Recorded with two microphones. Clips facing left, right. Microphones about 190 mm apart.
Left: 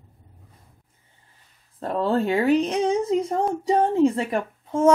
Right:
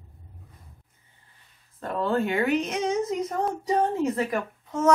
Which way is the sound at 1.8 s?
35° left (ahead or behind).